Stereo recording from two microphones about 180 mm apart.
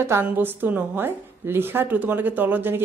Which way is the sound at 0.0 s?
15° right (ahead or behind).